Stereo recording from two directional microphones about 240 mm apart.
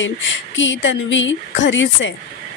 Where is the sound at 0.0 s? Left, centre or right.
Left.